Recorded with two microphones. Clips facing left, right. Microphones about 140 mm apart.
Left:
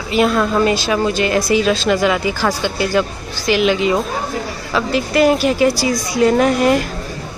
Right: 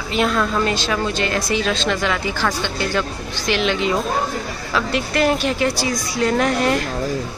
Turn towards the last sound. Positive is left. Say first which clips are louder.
# left 5 dB
turn(degrees=10)  # may be behind; listen again after turning